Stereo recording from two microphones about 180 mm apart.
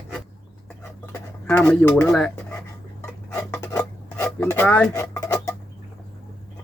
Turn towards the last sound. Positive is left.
turn(degrees=15)  # may be behind; listen again after turning